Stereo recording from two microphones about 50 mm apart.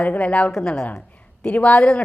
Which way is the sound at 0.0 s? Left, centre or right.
Left.